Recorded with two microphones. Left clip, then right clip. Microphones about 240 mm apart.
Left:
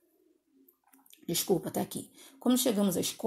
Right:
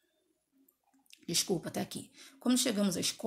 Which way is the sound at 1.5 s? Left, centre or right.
Centre.